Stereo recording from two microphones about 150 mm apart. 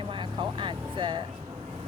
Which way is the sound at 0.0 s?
35° right (ahead or behind).